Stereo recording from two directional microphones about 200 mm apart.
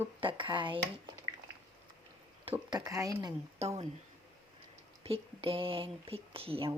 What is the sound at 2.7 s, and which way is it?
Speech, 15° right (ahead or behind).